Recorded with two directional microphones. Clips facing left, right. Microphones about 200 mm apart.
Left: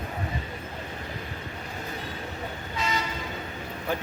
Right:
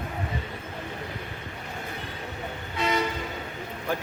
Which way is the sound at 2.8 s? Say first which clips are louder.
Right 4 dB; 60° right (ahead or behind).